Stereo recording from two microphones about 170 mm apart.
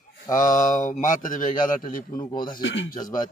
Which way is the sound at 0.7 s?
50° left (ahead or behind).